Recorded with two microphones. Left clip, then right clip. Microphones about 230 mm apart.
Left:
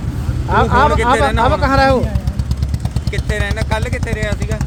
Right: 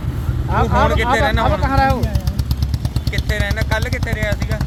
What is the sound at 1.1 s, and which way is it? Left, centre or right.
Speech, centre.